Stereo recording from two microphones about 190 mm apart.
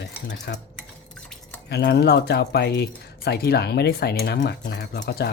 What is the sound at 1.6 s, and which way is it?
Speech, 60° left (ahead or behind).